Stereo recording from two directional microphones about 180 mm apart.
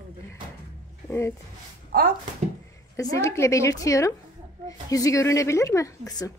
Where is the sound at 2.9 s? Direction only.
15° left (ahead or behind).